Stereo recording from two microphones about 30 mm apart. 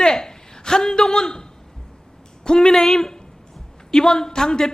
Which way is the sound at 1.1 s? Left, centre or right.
Left.